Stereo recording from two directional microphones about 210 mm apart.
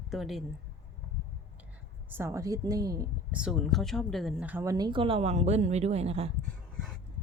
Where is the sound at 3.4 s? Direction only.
5° right (ahead or behind); by 6.3 s 30° right (ahead or behind).